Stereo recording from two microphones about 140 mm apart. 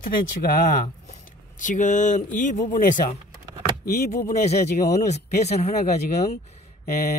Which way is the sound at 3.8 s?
90° left.